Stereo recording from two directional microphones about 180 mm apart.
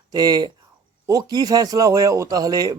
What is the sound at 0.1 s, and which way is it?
Speech, 20° right (ahead or behind).